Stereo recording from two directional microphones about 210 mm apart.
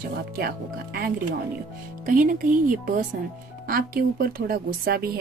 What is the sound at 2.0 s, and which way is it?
A woman's voice, 40° right (ahead or behind).